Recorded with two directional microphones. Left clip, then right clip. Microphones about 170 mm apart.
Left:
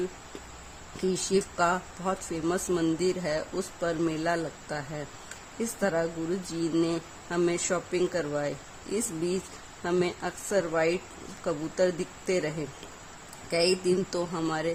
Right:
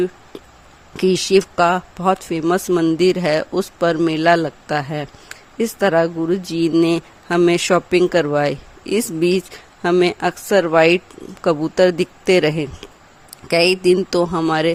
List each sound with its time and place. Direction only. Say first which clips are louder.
0.9 s speech: right 13 dB; 50° right (ahead or behind)